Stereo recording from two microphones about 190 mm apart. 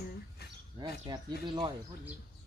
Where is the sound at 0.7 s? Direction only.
25° right (ahead or behind).